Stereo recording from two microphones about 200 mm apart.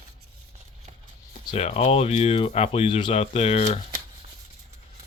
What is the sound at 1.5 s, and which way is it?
Speech, 30° left (ahead or behind).